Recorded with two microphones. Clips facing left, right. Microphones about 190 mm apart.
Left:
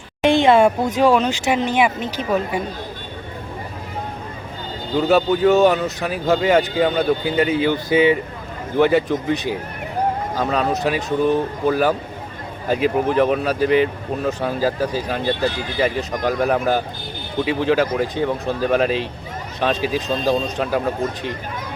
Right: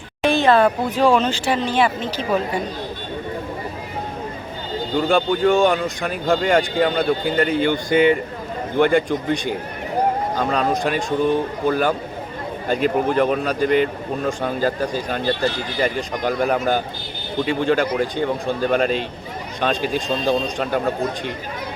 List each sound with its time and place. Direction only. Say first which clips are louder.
0.2 s a sound: left 2 dB; 15° left (ahead or behind)
0.9 s speech: right 1 dB; 10° left (ahead or behind)
4.9 s speech: left 2 dB; 5° left (ahead or behind)